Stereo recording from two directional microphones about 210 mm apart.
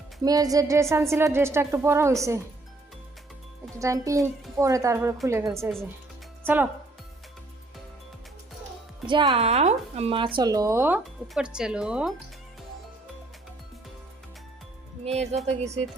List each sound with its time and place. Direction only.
0.2 s speech: 15° right (ahead or behind)
3.8 s speech: 15° right (ahead or behind)
9.0 s speech: 25° right (ahead or behind); by 12.1 s 5° right (ahead or behind)
15.0 s speech: 30° right (ahead or behind)